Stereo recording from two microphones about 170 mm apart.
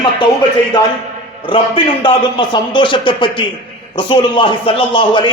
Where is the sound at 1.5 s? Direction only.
30° left (ahead or behind).